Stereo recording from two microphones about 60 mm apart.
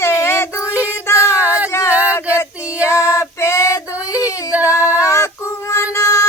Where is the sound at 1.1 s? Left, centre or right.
Left.